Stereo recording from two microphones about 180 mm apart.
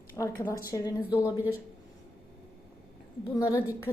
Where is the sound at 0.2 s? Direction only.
15° left (ahead or behind).